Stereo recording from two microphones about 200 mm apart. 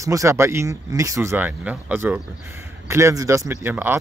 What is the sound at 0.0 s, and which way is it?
Speech, 15° right (ahead or behind).